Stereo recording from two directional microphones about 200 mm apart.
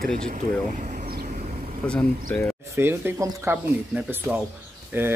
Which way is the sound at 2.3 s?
5° left (ahead or behind).